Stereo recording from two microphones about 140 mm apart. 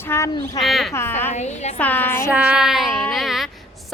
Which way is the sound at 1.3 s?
55° left (ahead or behind).